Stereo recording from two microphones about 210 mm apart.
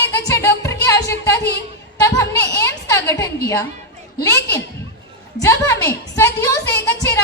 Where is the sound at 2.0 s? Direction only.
15° left (ahead or behind).